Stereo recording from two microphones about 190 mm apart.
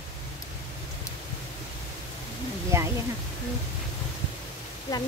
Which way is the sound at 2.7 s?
15° right (ahead or behind).